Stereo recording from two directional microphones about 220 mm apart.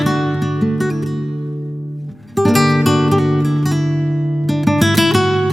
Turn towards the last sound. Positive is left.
turn(degrees=0)  # may be behind; listen again after turning